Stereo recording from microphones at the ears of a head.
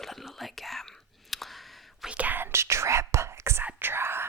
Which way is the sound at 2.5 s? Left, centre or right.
Right.